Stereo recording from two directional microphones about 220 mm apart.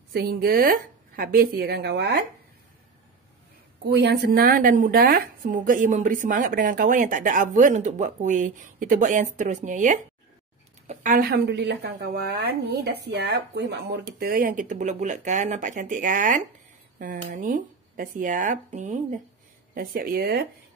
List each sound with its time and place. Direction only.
0.1 s a woman's voice: 45° right (ahead or behind)
3.9 s a woman's voice: 50° right (ahead or behind)